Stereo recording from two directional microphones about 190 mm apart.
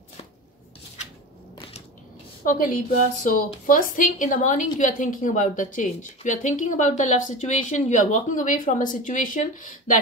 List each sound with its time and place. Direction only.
2.4 s a woman's voice: 45° left (ahead or behind)